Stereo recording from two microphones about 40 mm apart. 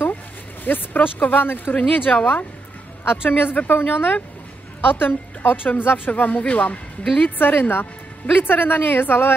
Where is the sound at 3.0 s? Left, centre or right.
Left.